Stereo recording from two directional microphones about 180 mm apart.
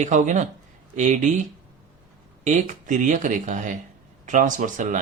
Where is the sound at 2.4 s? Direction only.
40° right (ahead or behind).